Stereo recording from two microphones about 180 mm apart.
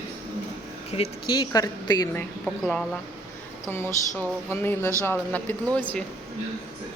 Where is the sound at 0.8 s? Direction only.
35° left (ahead or behind).